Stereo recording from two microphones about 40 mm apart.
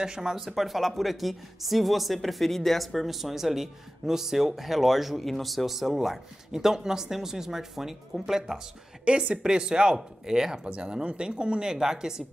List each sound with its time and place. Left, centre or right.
0.0 s speech: centre
0.6 s speech: centre
9.0 s speech: right